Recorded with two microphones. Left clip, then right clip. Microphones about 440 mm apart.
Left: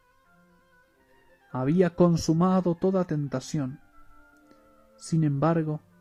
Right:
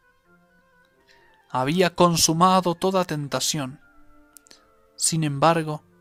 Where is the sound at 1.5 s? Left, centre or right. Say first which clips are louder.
Right 4 dB; right.